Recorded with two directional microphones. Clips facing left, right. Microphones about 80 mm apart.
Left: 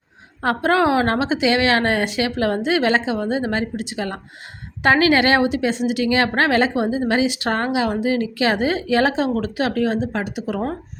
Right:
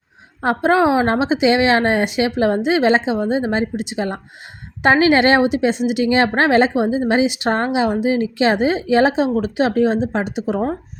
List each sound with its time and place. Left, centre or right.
0.4 s a woman's voice: right